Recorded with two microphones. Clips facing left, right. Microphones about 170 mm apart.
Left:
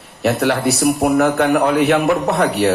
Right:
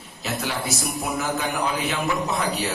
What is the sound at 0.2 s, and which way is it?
A man's voice, 65° left (ahead or behind).